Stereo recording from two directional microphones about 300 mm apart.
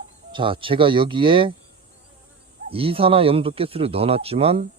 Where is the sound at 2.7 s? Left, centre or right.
Centre.